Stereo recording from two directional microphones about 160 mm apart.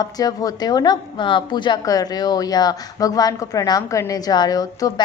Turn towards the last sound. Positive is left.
turn(degrees=25)  # may be behind; listen again after turning